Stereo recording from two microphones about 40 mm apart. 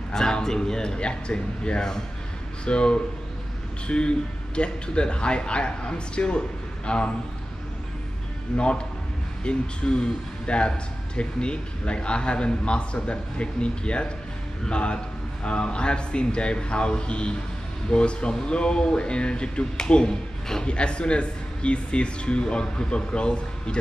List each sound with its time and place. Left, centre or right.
0.1 s speech: centre
8.5 s speech: left